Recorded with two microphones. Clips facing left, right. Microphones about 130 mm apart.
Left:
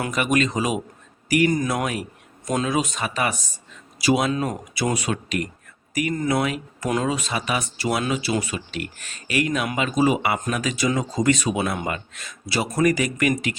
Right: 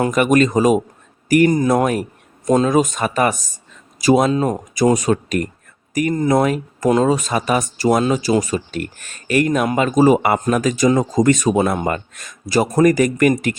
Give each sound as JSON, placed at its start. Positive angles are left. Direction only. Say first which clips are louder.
{"t": 0.0, "sound": "speech", "louder": "right 7 dB", "side_deg": -45}
{"t": 4.3, "sound": "speech", "louder": "right 6 dB", "side_deg": -30}
{"t": 4.7, "sound": "speech", "louder": "right 12 dB", "side_deg": -40}